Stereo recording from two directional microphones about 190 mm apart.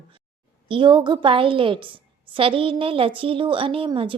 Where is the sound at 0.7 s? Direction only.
25° right (ahead or behind).